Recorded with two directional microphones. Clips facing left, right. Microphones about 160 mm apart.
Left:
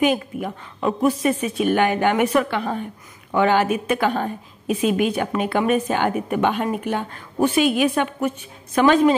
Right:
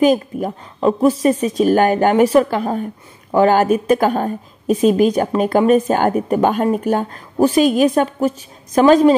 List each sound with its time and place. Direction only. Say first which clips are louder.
0.0 s a woman's voice: right 6 dB; 35° right (ahead or behind)